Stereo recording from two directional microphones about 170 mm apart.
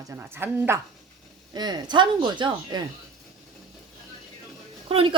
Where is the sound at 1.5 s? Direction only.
25° right (ahead or behind).